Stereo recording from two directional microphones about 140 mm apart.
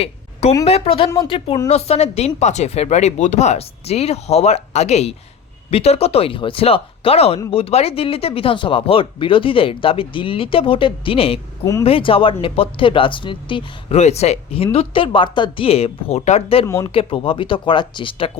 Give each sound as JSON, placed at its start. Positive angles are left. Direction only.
{"t": 0.0, "sound": "a sound", "side_deg": 50}
{"t": 0.6, "sound": "speech", "side_deg": 45}
{"t": 11.6, "sound": "speech", "side_deg": 20}
{"t": 11.9, "sound": "speech", "side_deg": 40}
{"t": 13.9, "sound": "speech", "side_deg": 50}
{"t": 16.6, "sound": "speech", "side_deg": 20}
{"t": 16.9, "sound": "speech", "side_deg": 40}